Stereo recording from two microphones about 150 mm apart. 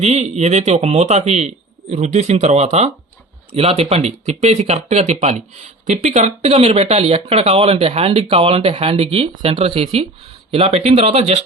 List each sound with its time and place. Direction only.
0.0 s speech: 45° right (ahead or behind)